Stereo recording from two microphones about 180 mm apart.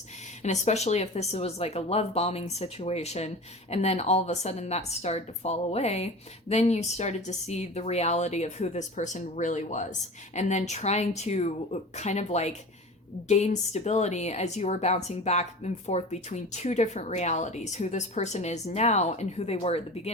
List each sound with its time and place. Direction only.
0.4 s speech: 40° left (ahead or behind)